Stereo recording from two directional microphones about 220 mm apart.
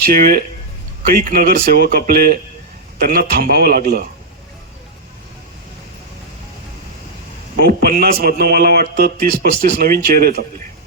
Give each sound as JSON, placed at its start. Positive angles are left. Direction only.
{"t": 0.1, "sound": "speech", "side_deg": -40}
{"t": 7.6, "sound": "speech", "side_deg": -45}